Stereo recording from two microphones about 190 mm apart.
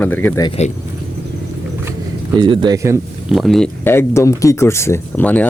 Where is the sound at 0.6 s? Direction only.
35° left (ahead or behind).